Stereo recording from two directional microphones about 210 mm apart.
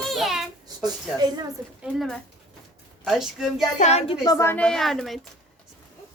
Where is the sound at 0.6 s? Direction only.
20° right (ahead or behind).